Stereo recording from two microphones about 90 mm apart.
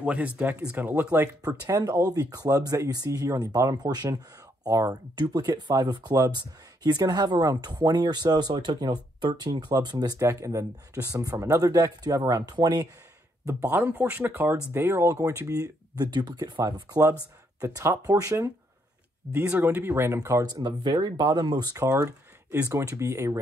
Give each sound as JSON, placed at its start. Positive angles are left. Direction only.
{"t": 0.0, "sound": "speech", "side_deg": -15}
{"t": 1.7, "sound": "speech", "side_deg": -40}
{"t": 5.2, "sound": "speech", "side_deg": -55}
{"t": 10.2, "sound": "speech", "side_deg": -35}
{"t": 13.6, "sound": "speech", "side_deg": -25}
{"t": 16.1, "sound": "speech", "side_deg": -55}
{"t": 16.6, "sound": "speech", "side_deg": -45}
{"t": 19.6, "sound": "speech", "side_deg": -25}
{"t": 20.5, "sound": "speech", "side_deg": -55}
{"t": 21.8, "sound": "speech", "side_deg": -35}